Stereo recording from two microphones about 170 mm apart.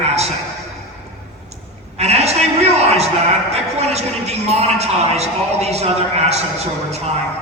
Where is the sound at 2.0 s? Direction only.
40° right (ahead or behind).